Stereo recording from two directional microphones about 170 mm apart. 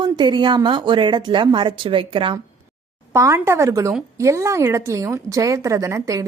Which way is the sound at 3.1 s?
15° right (ahead or behind).